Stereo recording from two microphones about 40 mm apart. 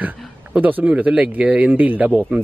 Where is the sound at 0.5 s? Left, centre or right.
Right.